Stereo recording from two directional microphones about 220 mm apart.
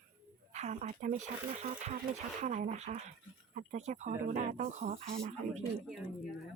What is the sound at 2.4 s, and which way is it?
Speech, 30° right (ahead or behind).